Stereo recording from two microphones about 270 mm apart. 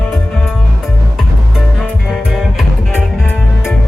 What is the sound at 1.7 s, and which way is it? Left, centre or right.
Music, centre.